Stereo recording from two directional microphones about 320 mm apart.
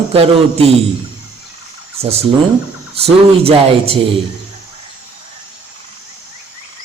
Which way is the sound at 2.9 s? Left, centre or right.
Centre.